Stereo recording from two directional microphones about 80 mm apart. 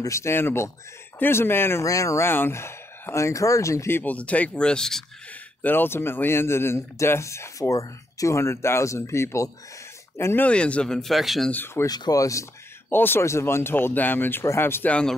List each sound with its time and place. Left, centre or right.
0.0 s speech: left
1.9 s speech: left
4.0 s speech: centre
5.6 s speech: left
10.4 s speech: centre
11.5 s speech: left
11.8 s speech: left
12.9 s speech: left
14.9 s speech: centre